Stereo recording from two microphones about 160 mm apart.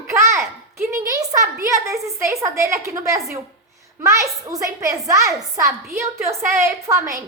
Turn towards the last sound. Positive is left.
turn(degrees=-20)  # may be behind; listen again after turning